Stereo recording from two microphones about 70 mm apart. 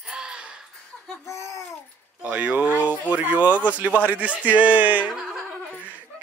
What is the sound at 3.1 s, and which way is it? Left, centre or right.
Speech, right.